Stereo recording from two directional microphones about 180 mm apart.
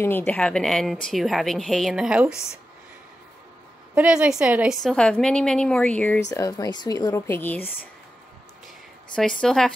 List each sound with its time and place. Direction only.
0.0 s a woman's voice: 10° left (ahead or behind); by 2.3 s 5° right (ahead or behind)
3.9 s a woman's voice: 5° right (ahead or behind)
6.3 s speech: 20° left (ahead or behind)
9.1 s a woman's voice: 5° left (ahead or behind)